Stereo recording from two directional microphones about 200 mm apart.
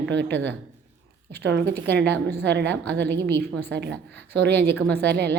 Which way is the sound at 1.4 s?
60° right (ahead or behind).